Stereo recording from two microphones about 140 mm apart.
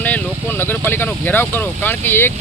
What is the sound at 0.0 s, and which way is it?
Speech, 15° left (ahead or behind).